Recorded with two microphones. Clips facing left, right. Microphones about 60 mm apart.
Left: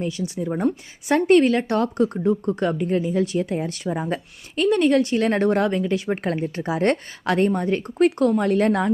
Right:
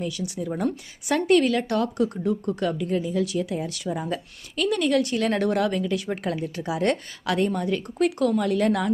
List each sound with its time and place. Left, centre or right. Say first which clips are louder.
0.0 s speech: left 3 dB; left